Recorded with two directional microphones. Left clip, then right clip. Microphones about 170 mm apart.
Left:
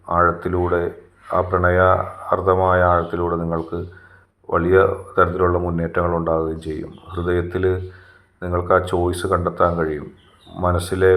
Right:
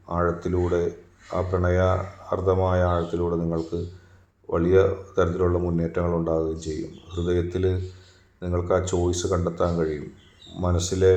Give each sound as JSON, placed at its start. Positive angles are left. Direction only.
{"t": 0.1, "sound": "a man's voice", "side_deg": 5}